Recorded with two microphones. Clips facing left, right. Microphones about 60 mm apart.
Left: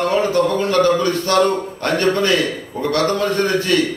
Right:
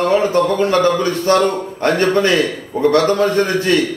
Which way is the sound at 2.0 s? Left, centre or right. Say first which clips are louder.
Right 1 dB; right.